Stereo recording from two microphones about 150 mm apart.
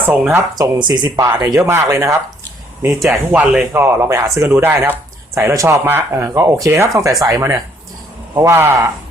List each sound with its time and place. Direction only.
0.0 s speech: 15° right (ahead or behind)
0.5 s speech: 25° right (ahead or behind)
3.1 s speech: 5° right (ahead or behind)
3.7 s speech: 20° right (ahead or behind)